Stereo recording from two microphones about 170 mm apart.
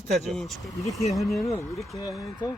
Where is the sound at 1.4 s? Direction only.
20° left (ahead or behind).